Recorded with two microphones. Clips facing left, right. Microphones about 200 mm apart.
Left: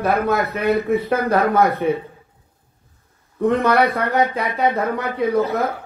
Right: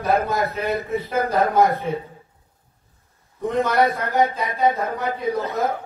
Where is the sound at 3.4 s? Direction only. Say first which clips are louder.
Left 5 dB; 55° left (ahead or behind).